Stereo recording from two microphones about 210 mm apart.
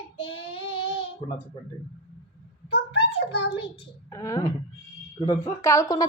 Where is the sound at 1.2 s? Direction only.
20° left (ahead or behind).